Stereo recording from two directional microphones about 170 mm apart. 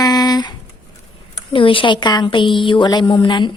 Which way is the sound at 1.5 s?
30° left (ahead or behind).